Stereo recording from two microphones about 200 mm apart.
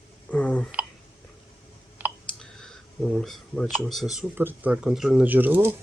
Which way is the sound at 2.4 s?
5° left (ahead or behind).